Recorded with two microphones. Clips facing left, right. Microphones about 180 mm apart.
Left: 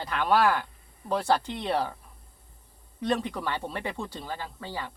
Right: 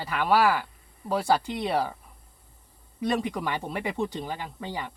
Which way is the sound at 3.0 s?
10° right (ahead or behind).